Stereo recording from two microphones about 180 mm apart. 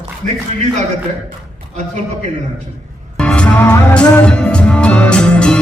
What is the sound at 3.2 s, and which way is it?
Music, 5° left (ahead or behind).